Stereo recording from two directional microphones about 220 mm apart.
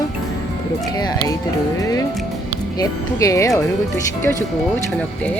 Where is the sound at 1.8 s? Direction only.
15° left (ahead or behind).